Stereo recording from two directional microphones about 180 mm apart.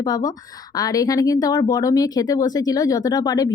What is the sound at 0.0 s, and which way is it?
Speech, 20° left (ahead or behind).